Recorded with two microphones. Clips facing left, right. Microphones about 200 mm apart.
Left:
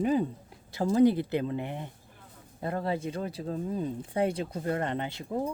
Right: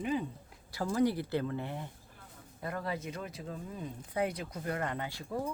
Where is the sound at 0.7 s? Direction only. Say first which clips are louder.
Left 7 dB; 25° left (ahead or behind).